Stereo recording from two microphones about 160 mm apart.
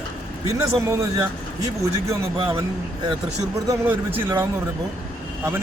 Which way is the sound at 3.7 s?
15° right (ahead or behind).